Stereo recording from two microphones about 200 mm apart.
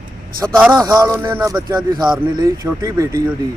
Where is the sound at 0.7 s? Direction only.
20° right (ahead or behind).